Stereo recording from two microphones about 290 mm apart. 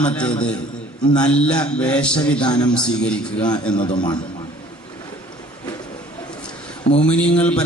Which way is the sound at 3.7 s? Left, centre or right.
Centre.